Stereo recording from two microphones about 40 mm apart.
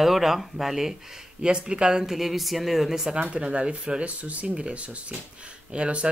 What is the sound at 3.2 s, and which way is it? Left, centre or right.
Speech, right.